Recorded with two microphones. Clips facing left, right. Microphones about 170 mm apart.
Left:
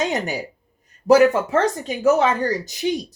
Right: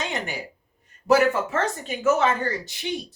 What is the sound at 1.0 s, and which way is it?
A woman's voice, 40° left (ahead or behind).